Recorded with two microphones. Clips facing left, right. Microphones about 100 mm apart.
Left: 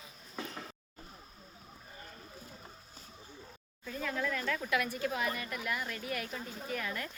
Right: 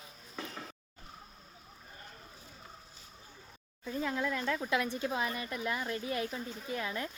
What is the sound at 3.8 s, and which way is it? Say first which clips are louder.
Speech: right 2 dB; 20° right (ahead or behind).